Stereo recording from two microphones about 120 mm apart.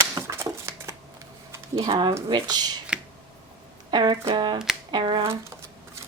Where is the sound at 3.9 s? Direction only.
40° right (ahead or behind).